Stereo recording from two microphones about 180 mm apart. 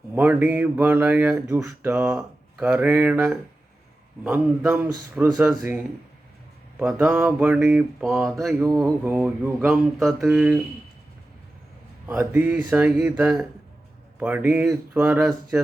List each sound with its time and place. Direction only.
0.1 s speech: 10° right (ahead or behind)
8.7 s mantra: 5° right (ahead or behind)
12.0 s speech: 10° right (ahead or behind)
15.3 s speech: 15° right (ahead or behind)